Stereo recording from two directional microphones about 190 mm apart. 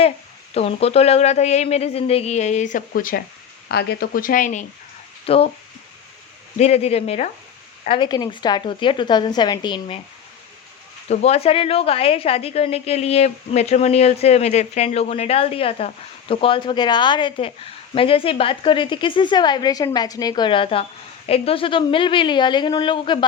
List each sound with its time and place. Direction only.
0.5 s a woman's voice: 30° left (ahead or behind)
5.2 s speech: 30° left (ahead or behind)
6.6 s a woman's voice: 35° left (ahead or behind)
11.1 s a woman's voice: 35° left (ahead or behind)